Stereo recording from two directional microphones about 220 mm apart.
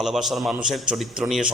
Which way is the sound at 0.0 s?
Centre (ahead or behind).